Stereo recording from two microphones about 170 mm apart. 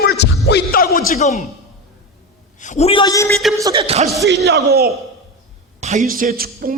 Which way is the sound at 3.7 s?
35° right (ahead or behind).